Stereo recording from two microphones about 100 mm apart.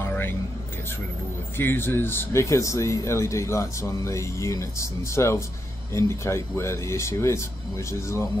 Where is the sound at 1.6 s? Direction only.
20° left (ahead or behind).